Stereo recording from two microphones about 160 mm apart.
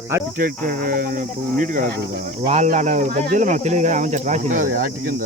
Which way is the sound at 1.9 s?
85° right.